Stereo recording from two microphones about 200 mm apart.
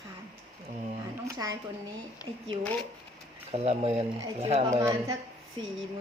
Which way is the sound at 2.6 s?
10° left (ahead or behind).